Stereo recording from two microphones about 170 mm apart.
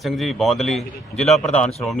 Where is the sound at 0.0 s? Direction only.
Centre (ahead or behind).